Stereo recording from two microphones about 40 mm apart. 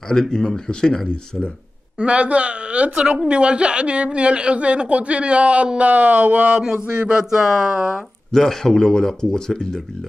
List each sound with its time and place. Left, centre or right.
0.1 s speech: centre
2.0 s speech: right
6.9 s speech: right
7.2 s speech: centre
8.3 s speech: centre
8.7 s speech: left